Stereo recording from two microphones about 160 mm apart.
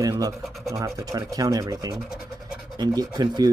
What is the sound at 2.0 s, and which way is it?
Scratch, centre (ahead or behind).